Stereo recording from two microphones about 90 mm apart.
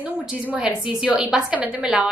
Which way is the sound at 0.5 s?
10° right (ahead or behind).